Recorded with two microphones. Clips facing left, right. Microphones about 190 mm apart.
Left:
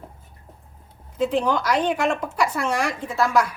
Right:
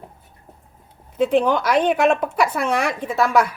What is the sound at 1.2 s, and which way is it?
Speech, 60° right (ahead or behind).